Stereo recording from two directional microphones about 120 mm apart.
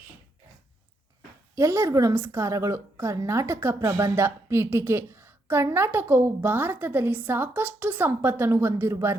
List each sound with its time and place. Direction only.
1.5 s a woman's voice: 20° right (ahead or behind)